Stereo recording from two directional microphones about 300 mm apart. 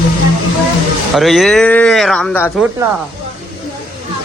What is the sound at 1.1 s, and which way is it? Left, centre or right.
Speech, centre.